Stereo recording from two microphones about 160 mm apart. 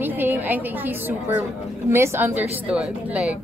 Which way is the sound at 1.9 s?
15° right (ahead or behind).